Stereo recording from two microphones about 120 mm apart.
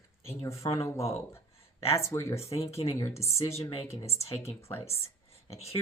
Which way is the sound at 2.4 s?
60° left (ahead or behind).